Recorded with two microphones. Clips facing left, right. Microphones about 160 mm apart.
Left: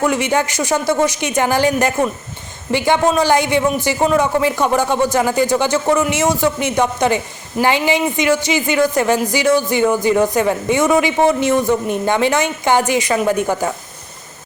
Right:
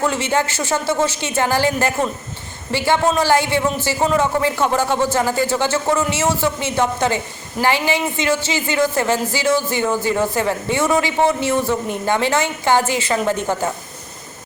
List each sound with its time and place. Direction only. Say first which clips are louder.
0.0 s speech: left 3 dB; 15° left (ahead or behind)